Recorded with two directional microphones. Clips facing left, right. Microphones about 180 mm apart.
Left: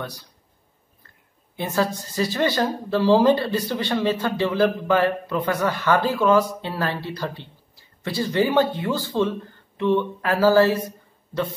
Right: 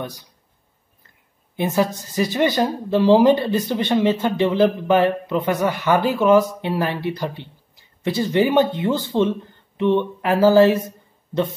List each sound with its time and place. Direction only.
0.0 s a woman's voice: 15° right (ahead or behind)
1.6 s a woman's voice: 15° right (ahead or behind)